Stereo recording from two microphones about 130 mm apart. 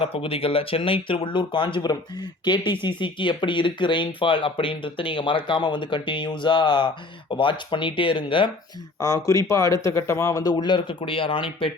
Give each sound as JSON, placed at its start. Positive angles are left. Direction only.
{"t": 0.0, "sound": "speech", "side_deg": 45}
{"t": 9.0, "sound": "speech", "side_deg": 25}